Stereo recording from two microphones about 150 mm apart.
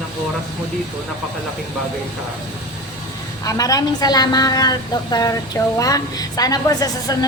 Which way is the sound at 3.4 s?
25° left (ahead or behind).